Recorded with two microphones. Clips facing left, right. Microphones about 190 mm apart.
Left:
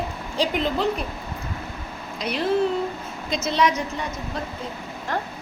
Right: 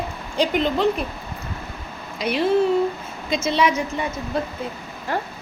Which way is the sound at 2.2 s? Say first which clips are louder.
Right 4 dB; 5° right (ahead or behind).